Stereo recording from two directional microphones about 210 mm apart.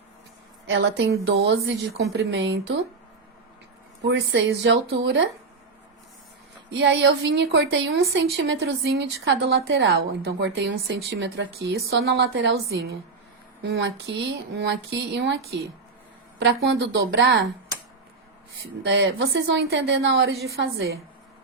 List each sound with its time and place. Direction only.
0.7 s a woman's voice: 55° right (ahead or behind)
4.0 s a woman's voice: 55° right (ahead or behind)
6.7 s a woman's voice: 60° right (ahead or behind)
8.4 s a woman's voice: 65° right (ahead or behind)
18.5 s a woman's voice: 65° right (ahead or behind)